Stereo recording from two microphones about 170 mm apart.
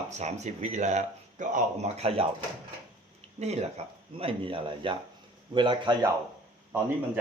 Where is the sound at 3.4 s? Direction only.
40° right (ahead or behind).